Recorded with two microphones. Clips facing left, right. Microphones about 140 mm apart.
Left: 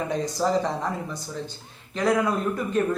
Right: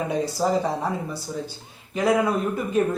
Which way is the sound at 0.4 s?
15° right (ahead or behind).